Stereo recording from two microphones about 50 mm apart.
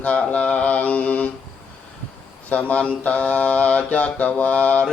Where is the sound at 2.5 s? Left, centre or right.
Left.